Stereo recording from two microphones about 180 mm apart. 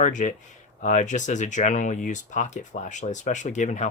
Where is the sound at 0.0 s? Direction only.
45° left (ahead or behind).